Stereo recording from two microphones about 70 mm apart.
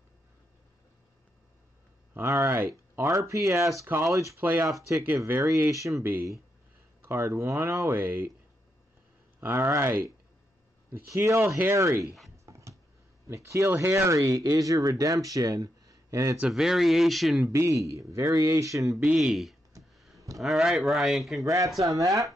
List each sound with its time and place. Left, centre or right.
2.2 s speech: right
4.4 s speech: right
4.6 s speech: right
5.2 s speech: right
5.7 s speech: right
7.2 s speech: right
9.4 s speech: right
12.4 s dog: right
13.3 s speech: right
16.5 s speech: centre
17.5 s speech: right
19.0 s speech: centre
21.4 s speech: right